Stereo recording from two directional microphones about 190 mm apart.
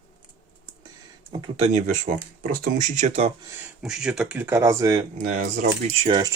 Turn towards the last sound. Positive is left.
turn(degrees=-30)  # may be behind; listen again after turning